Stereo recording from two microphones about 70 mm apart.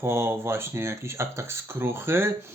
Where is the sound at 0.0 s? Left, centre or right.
Right.